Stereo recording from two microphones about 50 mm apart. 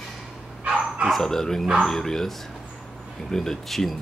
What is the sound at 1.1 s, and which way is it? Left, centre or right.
Speech, centre.